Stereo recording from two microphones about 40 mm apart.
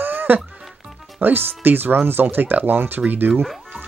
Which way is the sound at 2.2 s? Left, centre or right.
Right.